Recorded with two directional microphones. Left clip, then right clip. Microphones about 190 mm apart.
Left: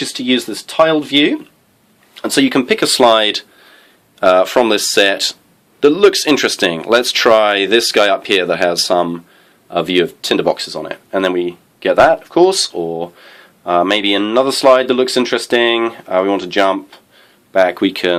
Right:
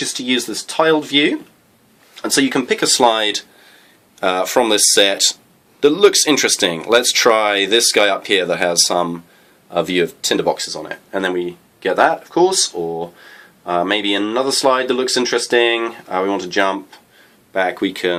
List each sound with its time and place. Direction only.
0.0 s speech: 40° left (ahead or behind)